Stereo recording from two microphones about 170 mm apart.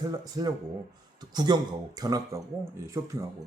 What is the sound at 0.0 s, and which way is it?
Speech, 25° right (ahead or behind).